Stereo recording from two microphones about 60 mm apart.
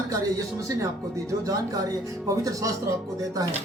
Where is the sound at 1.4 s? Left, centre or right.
Right.